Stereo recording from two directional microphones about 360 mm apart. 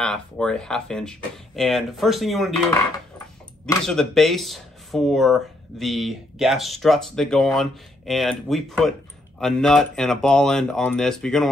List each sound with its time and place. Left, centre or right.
0.0 s speech: centre
3.6 s speech: centre